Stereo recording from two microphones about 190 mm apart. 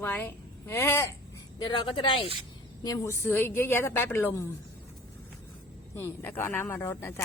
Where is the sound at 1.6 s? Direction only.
25° left (ahead or behind).